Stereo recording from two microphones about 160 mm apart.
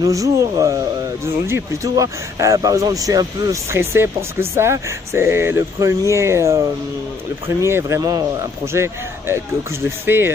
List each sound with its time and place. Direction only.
0.0 s speech: 20° right (ahead or behind)